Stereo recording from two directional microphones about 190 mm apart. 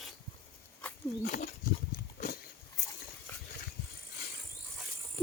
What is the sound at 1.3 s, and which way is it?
Wild animals, 45° left (ahead or behind).